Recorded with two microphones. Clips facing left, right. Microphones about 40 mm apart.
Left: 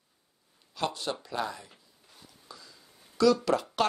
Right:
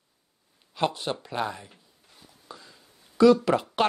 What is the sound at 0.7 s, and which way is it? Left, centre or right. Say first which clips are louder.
Speech: right 5 dB; right.